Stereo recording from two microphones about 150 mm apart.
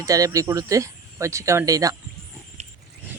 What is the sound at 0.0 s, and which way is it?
Speech, 20° right (ahead or behind).